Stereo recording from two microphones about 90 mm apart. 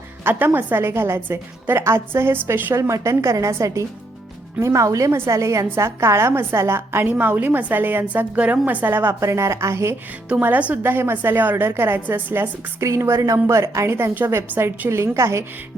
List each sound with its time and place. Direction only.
0.3 s a woman's voice: 20° right (ahead or behind)
10.4 s a woman's voice: 15° right (ahead or behind); by 15.4 s 35° right (ahead or behind)